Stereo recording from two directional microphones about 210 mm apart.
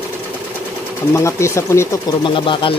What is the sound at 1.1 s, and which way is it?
Speech, 15° left (ahead or behind).